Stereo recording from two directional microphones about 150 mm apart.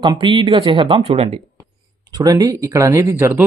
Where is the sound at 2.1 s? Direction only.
25° right (ahead or behind).